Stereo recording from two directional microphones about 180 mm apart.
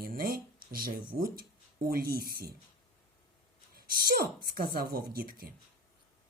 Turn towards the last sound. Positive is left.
turn(degrees=-55)  # may be behind; listen again after turning